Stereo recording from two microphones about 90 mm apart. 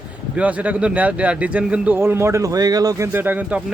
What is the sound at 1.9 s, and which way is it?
Speech, 25° right (ahead or behind).